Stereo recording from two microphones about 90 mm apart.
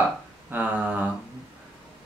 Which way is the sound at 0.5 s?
20° right (ahead or behind).